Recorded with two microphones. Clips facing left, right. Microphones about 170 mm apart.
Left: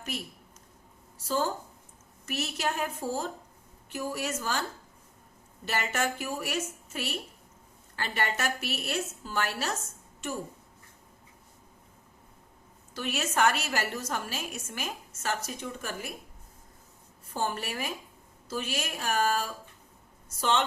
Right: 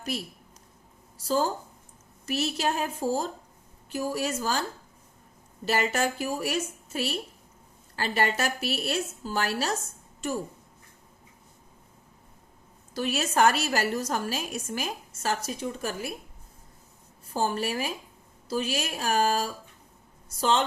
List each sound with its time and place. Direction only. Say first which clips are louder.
2.2 s a woman's voice: right 4 dB; 30° right (ahead or behind)
5.6 s a woman's voice: right 4 dB; 35° right (ahead or behind)
12.9 s a woman's voice: right 4 dB; 35° right (ahead or behind)
17.3 s a woman's voice: right 5 dB; 35° right (ahead or behind)